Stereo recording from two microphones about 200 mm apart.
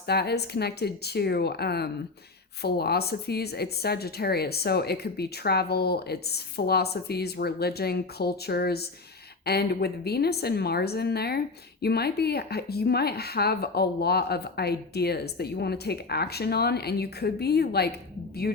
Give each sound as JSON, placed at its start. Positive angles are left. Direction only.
{"t": 0.1, "sound": "a woman's voice", "side_deg": 55}